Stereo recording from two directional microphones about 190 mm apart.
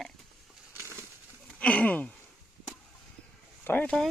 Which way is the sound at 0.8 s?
15° right (ahead or behind).